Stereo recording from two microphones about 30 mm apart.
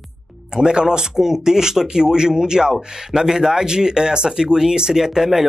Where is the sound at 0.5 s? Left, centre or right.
Right.